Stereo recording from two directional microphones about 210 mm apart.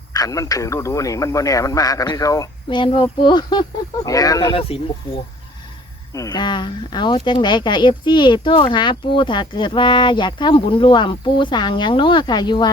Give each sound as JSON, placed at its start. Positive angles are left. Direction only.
{"t": 0.1, "sound": "a man's voice", "side_deg": 15}